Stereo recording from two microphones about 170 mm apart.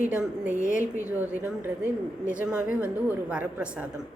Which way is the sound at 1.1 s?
10° right (ahead or behind).